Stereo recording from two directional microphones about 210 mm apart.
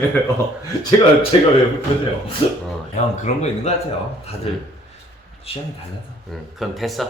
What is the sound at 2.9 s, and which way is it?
Speech, 35° left (ahead or behind).